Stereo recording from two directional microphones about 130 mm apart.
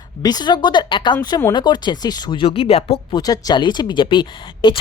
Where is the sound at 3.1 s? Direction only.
30° left (ahead or behind).